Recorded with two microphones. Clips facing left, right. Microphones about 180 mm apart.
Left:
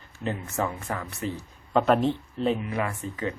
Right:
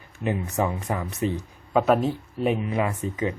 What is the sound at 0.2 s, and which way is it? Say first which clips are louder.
Speech: right 4 dB; 15° right (ahead or behind).